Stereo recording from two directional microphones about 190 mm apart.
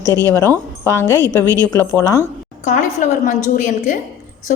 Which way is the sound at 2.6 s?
40° left (ahead or behind).